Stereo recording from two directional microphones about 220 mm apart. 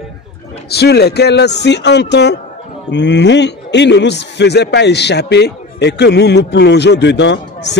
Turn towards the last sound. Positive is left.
turn(degrees=50)  # may be behind; listen again after turning